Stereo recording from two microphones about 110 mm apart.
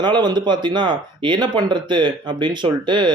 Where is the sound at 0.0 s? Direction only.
40° right (ahead or behind).